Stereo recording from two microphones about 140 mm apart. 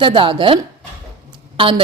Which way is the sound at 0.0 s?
35° right (ahead or behind).